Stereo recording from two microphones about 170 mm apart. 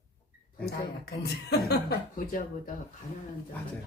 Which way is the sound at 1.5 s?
70° left (ahead or behind).